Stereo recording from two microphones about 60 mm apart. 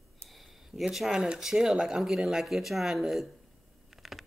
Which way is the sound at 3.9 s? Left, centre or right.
Centre.